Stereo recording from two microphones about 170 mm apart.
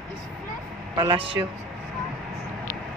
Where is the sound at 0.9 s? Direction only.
30° right (ahead or behind).